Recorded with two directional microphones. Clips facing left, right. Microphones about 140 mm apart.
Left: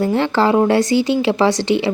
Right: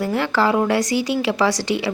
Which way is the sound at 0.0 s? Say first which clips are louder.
Left 4 dB; 25° left (ahead or behind).